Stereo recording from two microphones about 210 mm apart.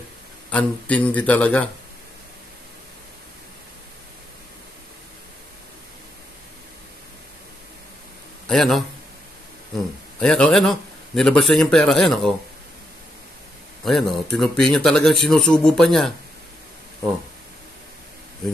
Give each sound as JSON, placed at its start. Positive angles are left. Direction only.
{"t": 0.5, "sound": "speech", "side_deg": 5}
{"t": 8.5, "sound": "a man's voice", "side_deg": 0}
{"t": 10.1, "sound": "a man's voice", "side_deg": 5}
{"t": 13.8, "sound": "a man's voice", "side_deg": 0}